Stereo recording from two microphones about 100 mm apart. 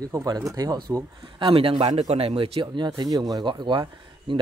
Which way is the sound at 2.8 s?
40° right (ahead or behind).